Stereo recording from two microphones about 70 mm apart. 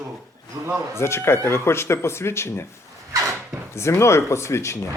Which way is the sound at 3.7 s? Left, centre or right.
Left.